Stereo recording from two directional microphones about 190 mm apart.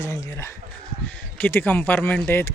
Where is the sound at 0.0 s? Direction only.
15° left (ahead or behind).